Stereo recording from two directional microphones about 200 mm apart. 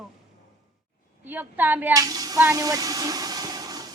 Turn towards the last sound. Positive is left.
turn(degrees=-20)  # may be behind; listen again after turning